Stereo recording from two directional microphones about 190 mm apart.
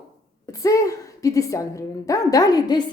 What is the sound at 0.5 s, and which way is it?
A woman's voice, 15° left (ahead or behind).